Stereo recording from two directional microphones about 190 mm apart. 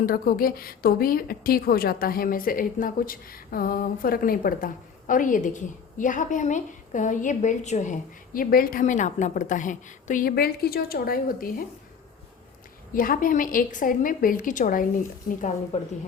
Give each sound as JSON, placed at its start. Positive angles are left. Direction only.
{"t": 0.0, "sound": "a woman's voice", "side_deg": 50}
{"t": 12.9, "sound": "a woman's voice", "side_deg": 45}